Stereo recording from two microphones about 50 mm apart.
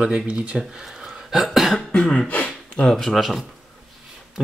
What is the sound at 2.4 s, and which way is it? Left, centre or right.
Gasp, left.